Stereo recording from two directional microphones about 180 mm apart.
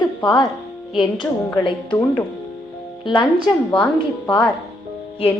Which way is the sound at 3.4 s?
5° left (ahead or behind).